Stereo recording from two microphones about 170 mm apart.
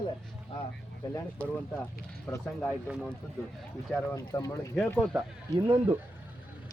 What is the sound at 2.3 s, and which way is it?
Speech, 15° left (ahead or behind).